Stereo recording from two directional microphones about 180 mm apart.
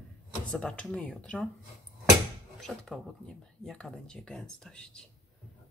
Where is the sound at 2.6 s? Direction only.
Centre (ahead or behind).